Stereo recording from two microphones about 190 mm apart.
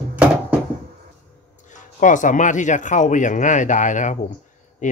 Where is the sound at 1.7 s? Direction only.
40° left (ahead or behind).